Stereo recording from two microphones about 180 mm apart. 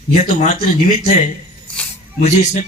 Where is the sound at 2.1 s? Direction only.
40° left (ahead or behind).